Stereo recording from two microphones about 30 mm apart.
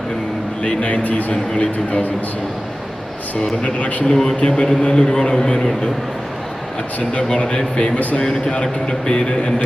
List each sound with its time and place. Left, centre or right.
0.6 s a man's voice: left
3.6 s a man's voice: left
4.1 s speech: centre
4.4 s speech: left
7.3 s speech: left